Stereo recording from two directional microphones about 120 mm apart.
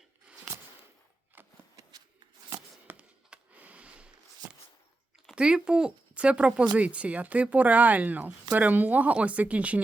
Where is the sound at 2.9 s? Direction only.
10° right (ahead or behind).